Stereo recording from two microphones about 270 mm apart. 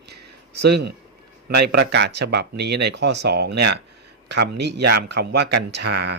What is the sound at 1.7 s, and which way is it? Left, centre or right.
Speech, right.